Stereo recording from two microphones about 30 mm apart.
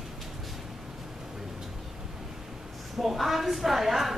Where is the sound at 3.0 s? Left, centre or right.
Centre.